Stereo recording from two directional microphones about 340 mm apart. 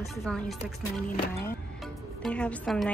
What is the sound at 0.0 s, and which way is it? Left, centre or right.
Speech, centre.